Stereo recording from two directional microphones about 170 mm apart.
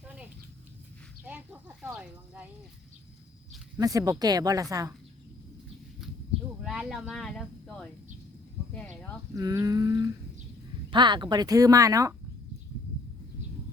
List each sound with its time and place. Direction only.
0.0 s a sound: 5° right (ahead or behind)
3.8 s speech: 20° right (ahead or behind)
6.6 s speech: centre (ahead or behind)
9.3 s speech: 20° right (ahead or behind)